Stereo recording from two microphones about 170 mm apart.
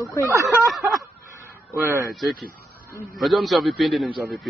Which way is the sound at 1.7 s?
15° right (ahead or behind).